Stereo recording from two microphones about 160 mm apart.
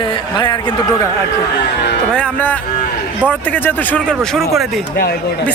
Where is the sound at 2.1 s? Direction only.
10° left (ahead or behind).